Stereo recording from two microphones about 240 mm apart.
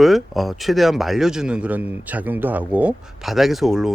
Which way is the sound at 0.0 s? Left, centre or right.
Centre.